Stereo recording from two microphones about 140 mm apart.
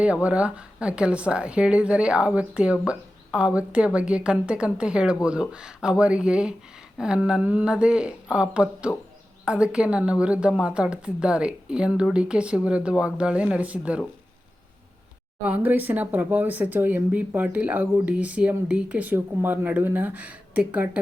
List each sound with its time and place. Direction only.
0.0 s speech: 10° right (ahead or behind)
15.4 s speech: 10° right (ahead or behind)